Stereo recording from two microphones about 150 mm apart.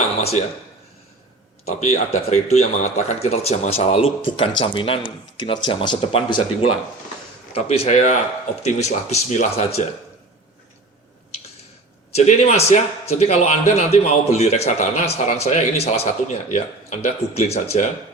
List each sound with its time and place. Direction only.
0.2 s a man's voice: 45° left (ahead or behind)
1.7 s a man's voice: 55° left (ahead or behind)
12.1 s a man's voice: 45° left (ahead or behind)